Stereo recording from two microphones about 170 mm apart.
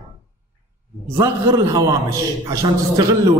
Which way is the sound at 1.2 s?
20° right (ahead or behind).